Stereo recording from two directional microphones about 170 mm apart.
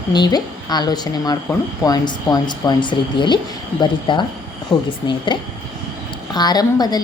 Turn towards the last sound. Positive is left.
turn(degrees=25)  # may be behind; listen again after turning